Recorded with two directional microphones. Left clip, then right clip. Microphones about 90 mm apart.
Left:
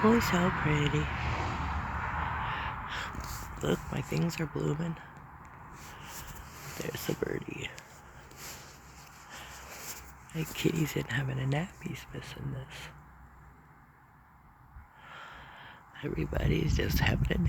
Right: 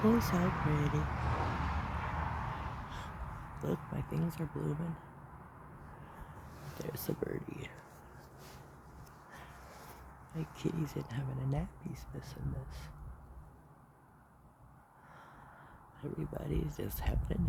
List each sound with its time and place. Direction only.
0.2 s speech: 15° right (ahead or behind)
0.4 s speech: 5° right (ahead or behind)
1.1 s a sound: 5° left (ahead or behind)
2.0 s vehicle: 5° right (ahead or behind)
2.5 s gasp: 5° left (ahead or behind)
3.6 s speech: 15° left (ahead or behind)
4.1 s speech: 25° left (ahead or behind)
6.7 s speech: 5° left (ahead or behind)
10.3 s speech: 10° left (ahead or behind)
12.1 s speech: 10° right (ahead or behind)
15.1 s a sound: 5° right (ahead or behind)